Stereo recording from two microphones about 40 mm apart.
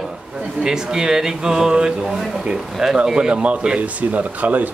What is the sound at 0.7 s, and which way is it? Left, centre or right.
Speech, centre.